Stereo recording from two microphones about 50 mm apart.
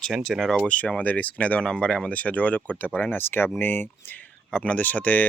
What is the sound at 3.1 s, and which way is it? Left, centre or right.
Speech, left.